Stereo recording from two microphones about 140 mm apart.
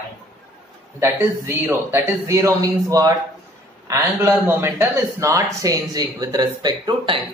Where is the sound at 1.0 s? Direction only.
15° right (ahead or behind).